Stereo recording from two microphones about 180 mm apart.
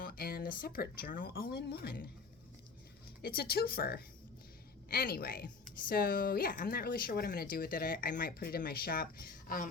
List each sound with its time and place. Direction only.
0.0 s a sound: 55° left (ahead or behind)
0.6 s speech: 55° left (ahead or behind)
3.2 s speech: 60° left (ahead or behind)